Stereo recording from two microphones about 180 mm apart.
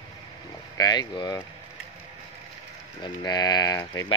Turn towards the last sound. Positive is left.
turn(degrees=20)  # may be behind; listen again after turning